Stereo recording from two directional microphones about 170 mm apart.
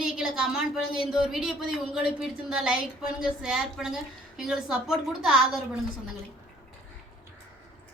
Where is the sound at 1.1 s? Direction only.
5° right (ahead or behind).